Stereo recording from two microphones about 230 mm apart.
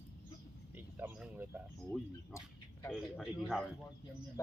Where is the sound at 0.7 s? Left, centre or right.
Centre.